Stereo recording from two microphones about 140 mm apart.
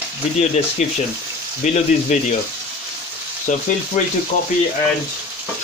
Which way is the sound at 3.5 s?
65° left (ahead or behind).